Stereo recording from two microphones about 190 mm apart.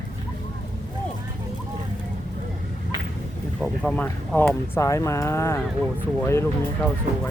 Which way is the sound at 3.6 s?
5° left (ahead or behind).